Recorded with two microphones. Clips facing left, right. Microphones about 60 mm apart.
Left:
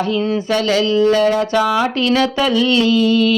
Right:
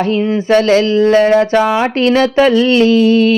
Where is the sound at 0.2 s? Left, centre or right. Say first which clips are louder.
Right 3 dB; right.